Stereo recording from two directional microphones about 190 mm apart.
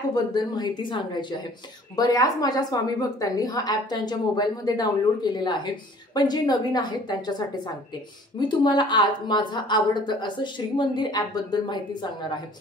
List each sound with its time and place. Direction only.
0.1 s a woman's voice: 20° left (ahead or behind)